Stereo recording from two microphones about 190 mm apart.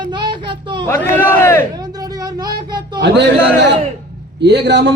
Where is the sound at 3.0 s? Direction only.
65° right (ahead or behind).